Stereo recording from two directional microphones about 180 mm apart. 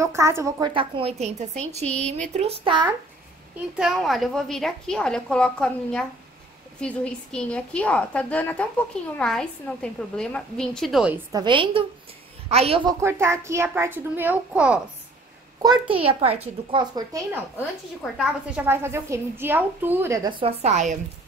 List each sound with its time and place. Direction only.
0.0 s a woman's voice: 15° right (ahead or behind); by 1.9 s 35° right (ahead or behind)
1.9 s a woman's voice: 5° left (ahead or behind)
2.3 s a woman's voice: 30° right (ahead or behind)
3.5 s a woman's voice: 5° right (ahead or behind)
11.3 s a woman's voice: 25° right (ahead or behind)
12.8 s a woman's voice: 15° right (ahead or behind)
15.9 s a child's voice: 30° right (ahead or behind)
18.1 s a woman's voice: centre (ahead or behind)
18.7 s a woman's voice: 15° right (ahead or behind)
20.2 s a child's voice: 30° right (ahead or behind)